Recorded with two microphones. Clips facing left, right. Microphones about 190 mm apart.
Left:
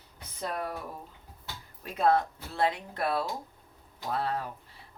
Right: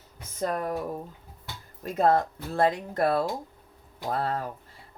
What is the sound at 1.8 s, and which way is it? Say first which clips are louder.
Speech: right 3 dB; 45° right (ahead or behind).